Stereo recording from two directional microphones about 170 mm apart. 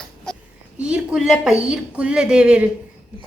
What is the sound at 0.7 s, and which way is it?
A woman's voice, 5° right (ahead or behind).